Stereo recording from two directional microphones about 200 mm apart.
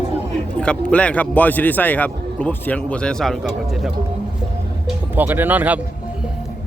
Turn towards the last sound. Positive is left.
turn(degrees=-10)  # may be behind; listen again after turning